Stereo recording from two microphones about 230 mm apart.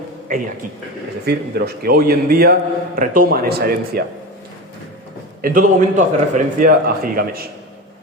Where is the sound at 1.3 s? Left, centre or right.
Right.